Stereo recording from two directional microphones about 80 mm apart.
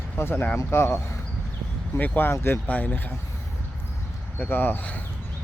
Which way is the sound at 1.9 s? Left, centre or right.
Left.